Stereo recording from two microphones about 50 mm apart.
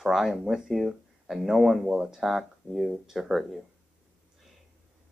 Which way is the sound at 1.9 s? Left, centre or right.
Centre.